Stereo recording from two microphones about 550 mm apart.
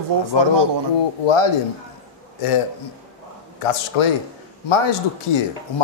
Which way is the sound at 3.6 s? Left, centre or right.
Left.